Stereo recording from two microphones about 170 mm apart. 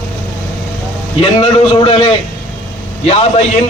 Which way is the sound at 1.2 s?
30° left (ahead or behind).